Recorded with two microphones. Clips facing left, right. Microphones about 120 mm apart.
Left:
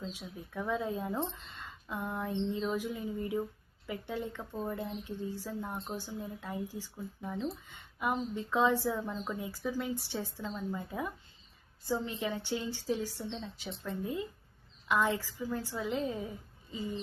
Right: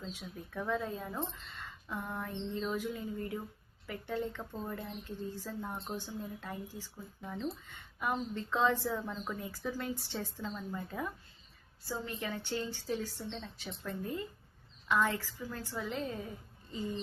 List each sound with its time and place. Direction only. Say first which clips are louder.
0.0 s a woman's voice: left 2 dB; 10° left (ahead or behind)
1.6 s a sound: left 2 dB; 20° left (ahead or behind)
2.6 s a woman's voice: left 2 dB; 10° left (ahead or behind)